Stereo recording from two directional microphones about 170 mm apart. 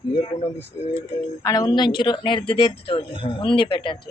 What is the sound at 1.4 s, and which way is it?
Speech, 20° left (ahead or behind).